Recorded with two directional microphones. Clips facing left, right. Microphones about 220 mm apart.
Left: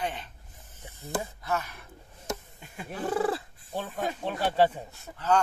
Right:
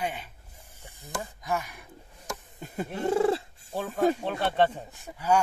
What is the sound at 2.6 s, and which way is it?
Cat, 40° right (ahead or behind).